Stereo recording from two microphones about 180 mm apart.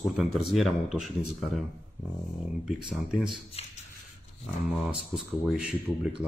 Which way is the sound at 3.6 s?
35° left (ahead or behind).